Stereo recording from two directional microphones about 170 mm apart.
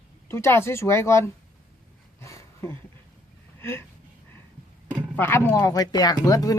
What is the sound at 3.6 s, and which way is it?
Speech, 15° left (ahead or behind).